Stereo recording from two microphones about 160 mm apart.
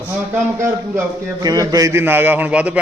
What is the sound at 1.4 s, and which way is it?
A man's voice, 25° right (ahead or behind).